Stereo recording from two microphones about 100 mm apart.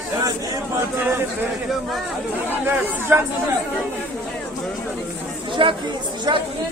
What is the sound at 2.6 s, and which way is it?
Speech, 20° right (ahead or behind).